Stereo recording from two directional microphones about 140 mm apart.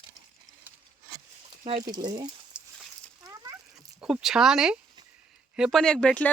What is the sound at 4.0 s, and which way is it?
A woman's voice, 5° right (ahead or behind).